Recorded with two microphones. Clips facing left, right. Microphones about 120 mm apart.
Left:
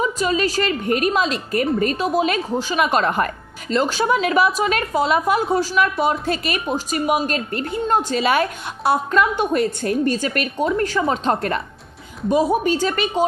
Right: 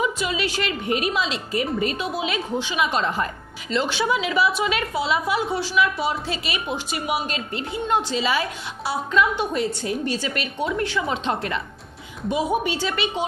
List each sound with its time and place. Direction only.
0.0 s a woman's voice: 40° left (ahead or behind)
3.7 s a woman's voice: 45° left (ahead or behind)